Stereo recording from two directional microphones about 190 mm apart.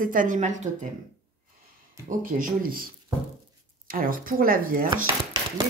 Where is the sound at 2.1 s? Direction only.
45° right (ahead or behind).